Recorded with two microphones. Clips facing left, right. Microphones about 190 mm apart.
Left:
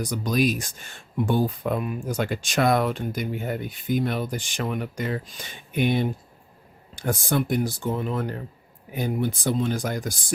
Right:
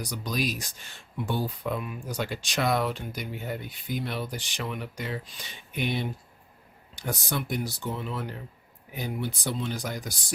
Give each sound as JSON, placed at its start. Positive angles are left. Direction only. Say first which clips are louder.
{"t": 0.0, "sound": "speech", "louder": "left 7 dB", "side_deg": 50}